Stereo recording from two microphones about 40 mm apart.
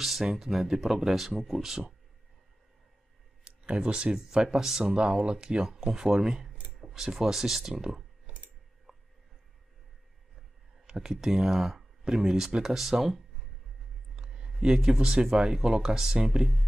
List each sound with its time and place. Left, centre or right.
0.2 s speech: centre
3.4 s speech: right; by 4.9 s centre
4.9 s speech: right
8.9 s a sound: centre
10.9 s speech: centre
14.1 s a sound: centre
14.6 s speech: centre